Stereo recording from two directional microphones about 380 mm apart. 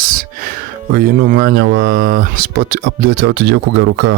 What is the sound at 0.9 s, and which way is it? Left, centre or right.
Speech, right.